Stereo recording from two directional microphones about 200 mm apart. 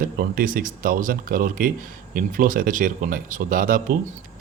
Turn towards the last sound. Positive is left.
turn(degrees=-45)  # may be behind; listen again after turning